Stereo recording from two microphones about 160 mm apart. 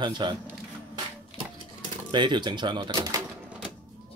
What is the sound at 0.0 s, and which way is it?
Speech, 30° right (ahead or behind).